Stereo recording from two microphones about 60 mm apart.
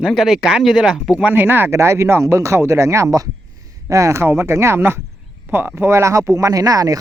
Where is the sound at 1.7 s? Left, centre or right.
Right.